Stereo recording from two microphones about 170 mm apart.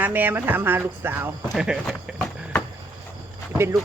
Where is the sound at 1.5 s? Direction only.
Centre (ahead or behind).